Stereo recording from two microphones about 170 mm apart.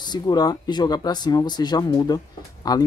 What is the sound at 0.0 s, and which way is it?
Speech, 25° left (ahead or behind).